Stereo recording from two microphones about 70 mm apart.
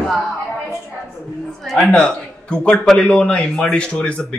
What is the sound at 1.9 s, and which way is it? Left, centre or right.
A man's voice, centre.